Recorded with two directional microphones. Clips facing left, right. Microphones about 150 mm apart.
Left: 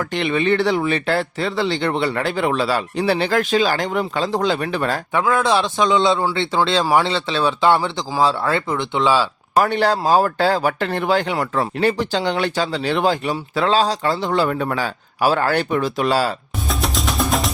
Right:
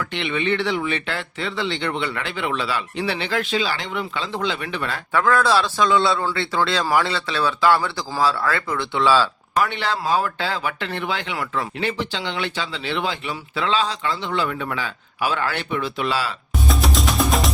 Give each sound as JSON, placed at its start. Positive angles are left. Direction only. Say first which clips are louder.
{"t": 0.0, "sound": "speech", "louder": "left 5 dB", "side_deg": 40}
{"t": 5.1, "sound": "speech", "louder": "even", "side_deg": 20}
{"t": 9.6, "sound": "speech", "louder": "left 6 dB", "side_deg": 45}
{"t": 16.6, "sound": "music", "louder": "right 1 dB", "side_deg": 0}